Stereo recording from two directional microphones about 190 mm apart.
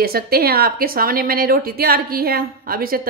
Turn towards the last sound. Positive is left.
turn(degrees=-50)  # may be behind; listen again after turning